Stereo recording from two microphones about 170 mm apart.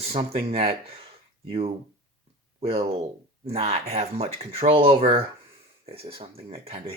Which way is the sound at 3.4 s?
35° right (ahead or behind).